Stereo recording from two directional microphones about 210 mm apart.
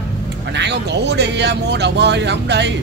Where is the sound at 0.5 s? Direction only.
55° right (ahead or behind).